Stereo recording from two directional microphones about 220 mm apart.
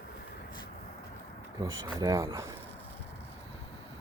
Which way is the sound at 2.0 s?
15° right (ahead or behind).